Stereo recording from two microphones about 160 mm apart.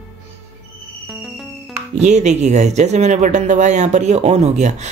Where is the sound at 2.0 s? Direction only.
45° right (ahead or behind).